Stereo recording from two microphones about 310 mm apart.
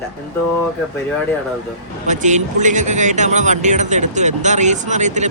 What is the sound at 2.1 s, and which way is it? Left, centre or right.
A man's voice, right.